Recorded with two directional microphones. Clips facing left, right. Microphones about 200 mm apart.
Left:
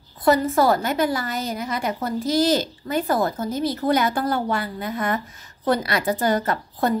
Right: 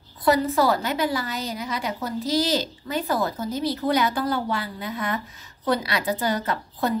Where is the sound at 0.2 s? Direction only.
50° left (ahead or behind).